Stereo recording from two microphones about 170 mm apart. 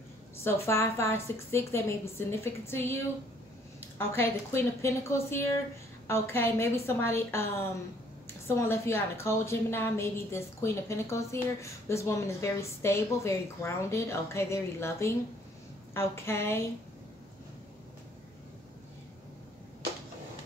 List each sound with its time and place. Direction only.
0.4 s a woman's voice: 15° left (ahead or behind)
4.1 s a woman's voice: 15° left (ahead or behind)
8.5 s a woman's voice: 15° left (ahead or behind)